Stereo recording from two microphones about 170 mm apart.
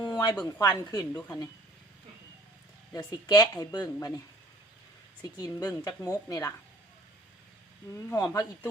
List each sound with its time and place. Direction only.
0.0 s a sound: 25° left (ahead or behind)
0.4 s speech: 20° left (ahead or behind)
2.9 s speech: 25° left (ahead or behind)
5.4 s speech: 20° left (ahead or behind)
7.9 s speech: 20° left (ahead or behind)